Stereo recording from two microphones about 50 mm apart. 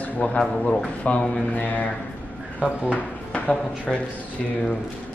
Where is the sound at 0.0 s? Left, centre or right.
Left.